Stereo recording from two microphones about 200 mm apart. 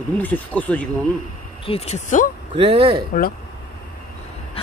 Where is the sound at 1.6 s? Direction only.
30° left (ahead or behind).